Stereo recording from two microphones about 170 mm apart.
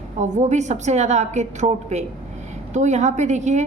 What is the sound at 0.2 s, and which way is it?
A woman's voice, 45° right (ahead or behind).